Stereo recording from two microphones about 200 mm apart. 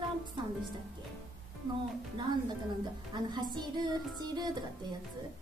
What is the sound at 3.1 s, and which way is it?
Speech, 20° right (ahead or behind).